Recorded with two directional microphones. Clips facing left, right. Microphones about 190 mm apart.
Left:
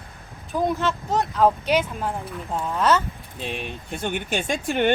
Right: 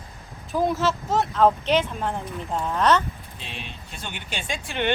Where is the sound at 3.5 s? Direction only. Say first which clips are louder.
Left 8 dB; 50° left (ahead or behind).